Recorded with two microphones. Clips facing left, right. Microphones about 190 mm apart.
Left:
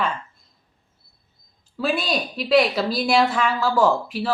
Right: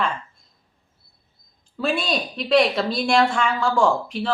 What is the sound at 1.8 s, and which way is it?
A woman's voice, centre (ahead or behind).